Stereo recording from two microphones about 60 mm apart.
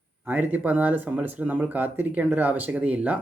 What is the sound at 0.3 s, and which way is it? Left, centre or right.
Speech, right.